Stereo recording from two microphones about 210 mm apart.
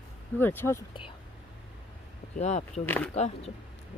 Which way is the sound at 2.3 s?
30° left (ahead or behind).